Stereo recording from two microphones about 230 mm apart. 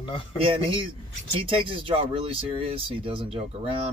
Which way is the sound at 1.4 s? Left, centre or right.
Right.